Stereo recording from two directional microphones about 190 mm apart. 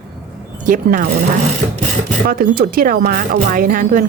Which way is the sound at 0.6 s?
45° right (ahead or behind).